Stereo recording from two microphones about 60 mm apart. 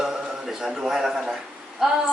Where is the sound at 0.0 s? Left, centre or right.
Centre.